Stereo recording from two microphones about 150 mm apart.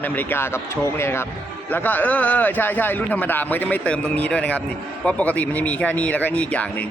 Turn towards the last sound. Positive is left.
turn(degrees=10)  # may be behind; listen again after turning